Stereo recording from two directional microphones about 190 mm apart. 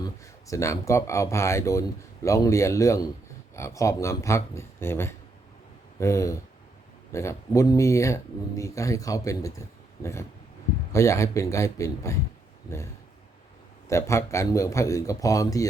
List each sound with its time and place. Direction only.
0.0 s speech: 15° left (ahead or behind)
13.9 s speech: 15° left (ahead or behind)